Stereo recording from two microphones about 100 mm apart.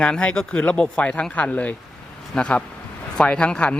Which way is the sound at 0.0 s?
10° left (ahead or behind).